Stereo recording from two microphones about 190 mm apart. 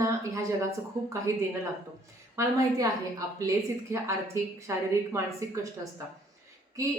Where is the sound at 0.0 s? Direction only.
15° right (ahead or behind).